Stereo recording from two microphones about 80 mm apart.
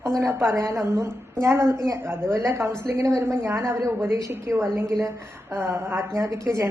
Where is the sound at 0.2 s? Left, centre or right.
Right.